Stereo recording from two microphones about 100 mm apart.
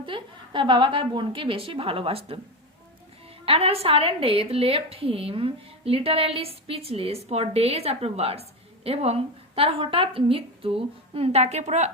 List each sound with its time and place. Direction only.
0.0 s a woman's voice: 55° right (ahead or behind); by 2.4 s 75° right (ahead or behind)
3.4 s a woman's voice: 70° right (ahead or behind); by 11.9 s 90° right